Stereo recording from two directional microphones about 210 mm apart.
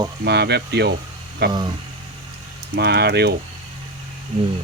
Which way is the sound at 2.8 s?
50° right (ahead or behind).